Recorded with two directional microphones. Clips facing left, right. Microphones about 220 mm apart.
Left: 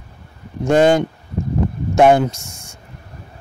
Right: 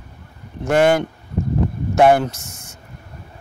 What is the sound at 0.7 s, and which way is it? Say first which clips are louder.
Speech: left 2 dB; 20° left (ahead or behind).